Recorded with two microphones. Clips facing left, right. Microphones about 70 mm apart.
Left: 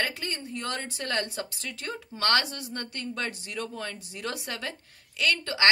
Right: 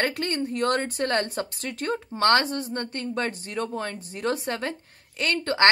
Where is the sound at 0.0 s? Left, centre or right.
Right.